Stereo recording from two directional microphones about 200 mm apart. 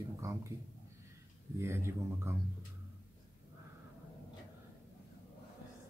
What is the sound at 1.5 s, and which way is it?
Speech, 15° right (ahead or behind).